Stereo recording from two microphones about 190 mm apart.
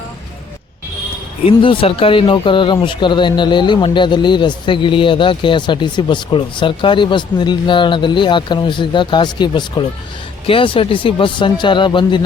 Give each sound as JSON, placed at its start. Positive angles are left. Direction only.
{"t": 1.5, "sound": "speech", "side_deg": 30}